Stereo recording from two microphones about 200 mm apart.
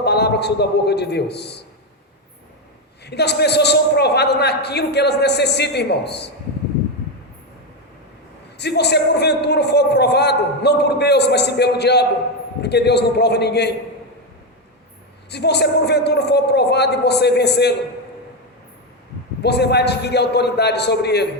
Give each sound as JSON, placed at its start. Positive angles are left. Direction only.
{"t": 0.0, "sound": "a man's voice", "side_deg": 55}
{"t": 3.0, "sound": "a man's voice", "side_deg": 55}
{"t": 8.5, "sound": "a man's voice", "side_deg": 55}
{"t": 15.3, "sound": "a man's voice", "side_deg": 55}
{"t": 19.4, "sound": "a man's voice", "side_deg": 55}